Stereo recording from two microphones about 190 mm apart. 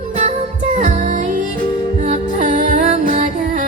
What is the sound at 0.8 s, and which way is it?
Music, 40° right (ahead or behind).